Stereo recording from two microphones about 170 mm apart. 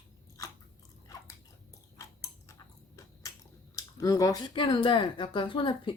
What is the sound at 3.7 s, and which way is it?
Speech, 20° left (ahead or behind).